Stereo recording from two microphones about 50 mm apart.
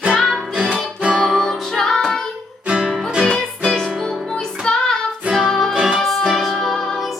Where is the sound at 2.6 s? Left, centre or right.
Centre.